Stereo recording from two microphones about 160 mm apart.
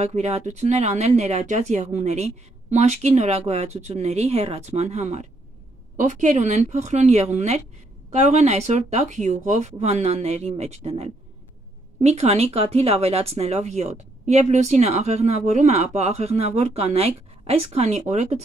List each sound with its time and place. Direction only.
0.0 s speech: 40° right (ahead or behind)